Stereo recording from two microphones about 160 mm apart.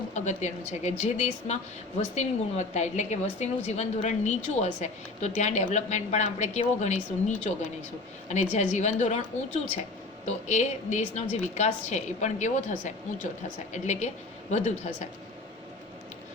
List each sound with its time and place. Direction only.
0.1 s a woman's voice: 45° left (ahead or behind)